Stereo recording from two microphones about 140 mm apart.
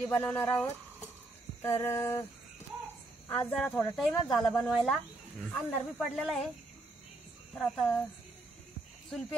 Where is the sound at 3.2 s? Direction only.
15° left (ahead or behind).